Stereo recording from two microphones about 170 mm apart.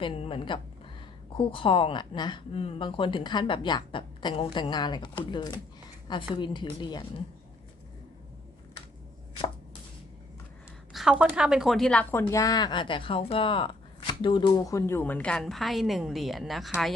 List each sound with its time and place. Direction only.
0.0 s speech: 30° left (ahead or behind)
10.9 s a woman's voice: 5° right (ahead or behind)